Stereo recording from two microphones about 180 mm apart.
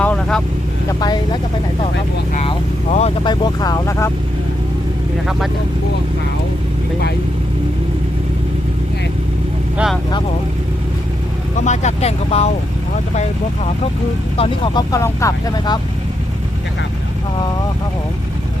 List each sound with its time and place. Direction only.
0.0 s vehicle: 5° left (ahead or behind)
0.9 s speech: 20° left (ahead or behind)
2.3 s speech: 35° left (ahead or behind)
3.4 s speech: 20° left (ahead or behind)
9.7 s speech: 5° right (ahead or behind)
11.6 s speech: 40° left (ahead or behind)
14.3 s speech: 30° left (ahead or behind)